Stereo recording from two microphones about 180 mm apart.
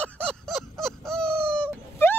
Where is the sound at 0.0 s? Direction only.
5° left (ahead or behind).